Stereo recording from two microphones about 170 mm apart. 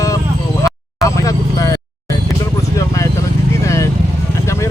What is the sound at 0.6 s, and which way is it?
Vehicle, 20° left (ahead or behind).